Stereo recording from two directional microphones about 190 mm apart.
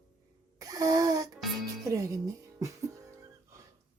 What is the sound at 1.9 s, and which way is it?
Speech, 15° right (ahead or behind).